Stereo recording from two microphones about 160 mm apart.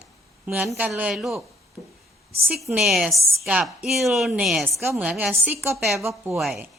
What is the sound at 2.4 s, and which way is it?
A woman's voice, 5° right (ahead or behind).